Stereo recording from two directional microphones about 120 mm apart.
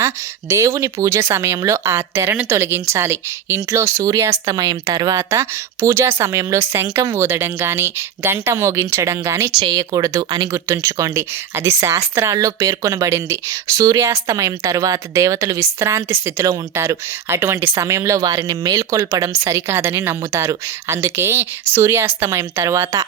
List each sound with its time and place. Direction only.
0.0 s speech: 20° right (ahead or behind)